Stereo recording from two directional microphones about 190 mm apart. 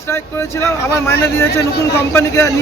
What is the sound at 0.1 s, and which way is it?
Speech, 15° left (ahead or behind).